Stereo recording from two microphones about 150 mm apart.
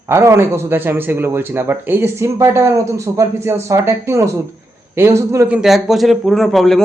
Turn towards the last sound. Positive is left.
turn(degrees=0)  # may be behind; listen again after turning